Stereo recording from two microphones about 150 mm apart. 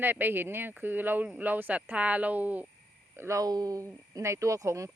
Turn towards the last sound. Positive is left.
turn(degrees=-20)  # may be behind; listen again after turning